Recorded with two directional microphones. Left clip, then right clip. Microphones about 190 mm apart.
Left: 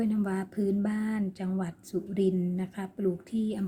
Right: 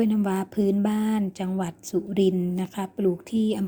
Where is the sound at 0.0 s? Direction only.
20° right (ahead or behind).